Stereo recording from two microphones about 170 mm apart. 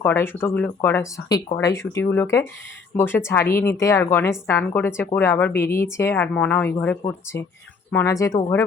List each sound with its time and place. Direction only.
0.0 s a woman's voice: 10° left (ahead or behind)